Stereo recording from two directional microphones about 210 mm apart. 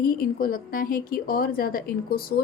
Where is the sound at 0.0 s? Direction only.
45° left (ahead or behind).